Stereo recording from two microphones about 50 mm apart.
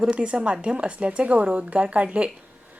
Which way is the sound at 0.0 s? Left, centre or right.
Right.